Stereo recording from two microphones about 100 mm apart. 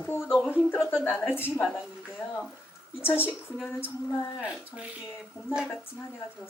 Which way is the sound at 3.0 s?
20° left (ahead or behind).